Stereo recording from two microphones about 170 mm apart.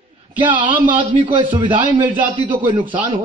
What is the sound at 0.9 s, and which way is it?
Speech, 30° right (ahead or behind).